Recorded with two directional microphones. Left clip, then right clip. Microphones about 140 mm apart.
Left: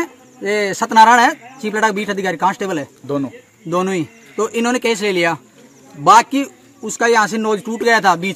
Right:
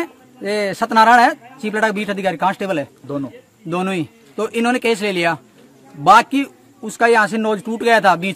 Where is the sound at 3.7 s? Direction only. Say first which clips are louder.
Left 3 dB; 40° right (ahead or behind).